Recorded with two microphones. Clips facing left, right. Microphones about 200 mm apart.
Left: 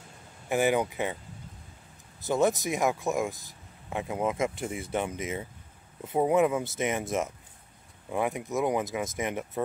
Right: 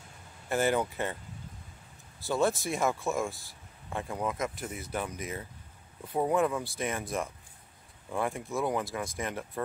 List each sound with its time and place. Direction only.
0.5 s speech: 15° left (ahead or behind)
2.1 s speech: 20° left (ahead or behind)